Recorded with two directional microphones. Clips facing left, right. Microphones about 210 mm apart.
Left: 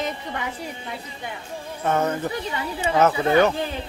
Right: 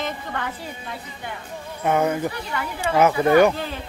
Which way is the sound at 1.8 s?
10° right (ahead or behind).